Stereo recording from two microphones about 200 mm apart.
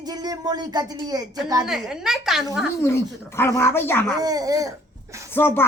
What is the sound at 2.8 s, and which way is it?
Speech, 15° left (ahead or behind).